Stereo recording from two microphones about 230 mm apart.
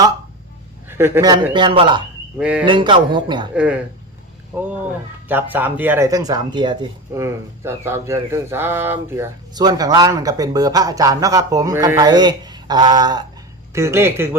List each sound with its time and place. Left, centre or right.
0.9 s speech: centre
2.4 s speech: centre
2.6 s a man's voice: right
3.5 s speech: centre